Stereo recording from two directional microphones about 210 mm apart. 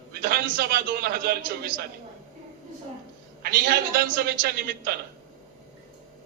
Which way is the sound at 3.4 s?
45° right (ahead or behind).